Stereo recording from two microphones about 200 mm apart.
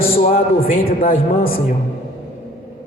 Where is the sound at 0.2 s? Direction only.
40° left (ahead or behind).